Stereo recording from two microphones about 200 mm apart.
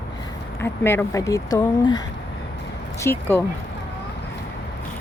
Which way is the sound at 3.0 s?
10° left (ahead or behind).